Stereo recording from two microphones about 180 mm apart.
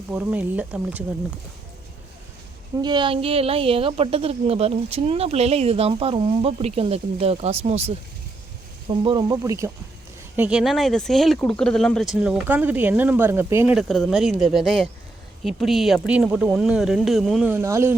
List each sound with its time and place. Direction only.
0.1 s speech: 10° right (ahead or behind)
2.8 s a woman's voice: 25° right (ahead or behind)
8.9 s speech: 25° right (ahead or behind)
13.7 s speech: centre (ahead or behind)
17.5 s speech: 15° right (ahead or behind)